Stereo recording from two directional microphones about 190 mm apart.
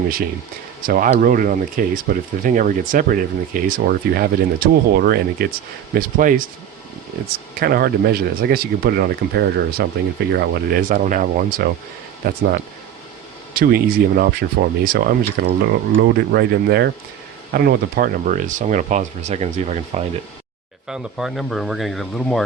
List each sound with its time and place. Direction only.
0.9 s speech: 50° right (ahead or behind)
7.6 s speech: 50° right (ahead or behind)
13.5 s speech: 50° right (ahead or behind)
20.8 s speech: 5° right (ahead or behind)